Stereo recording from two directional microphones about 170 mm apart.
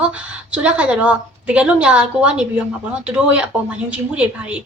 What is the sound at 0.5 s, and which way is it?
A woman's voice, 5° right (ahead or behind).